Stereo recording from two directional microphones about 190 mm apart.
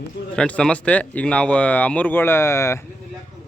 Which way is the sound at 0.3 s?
5° left (ahead or behind).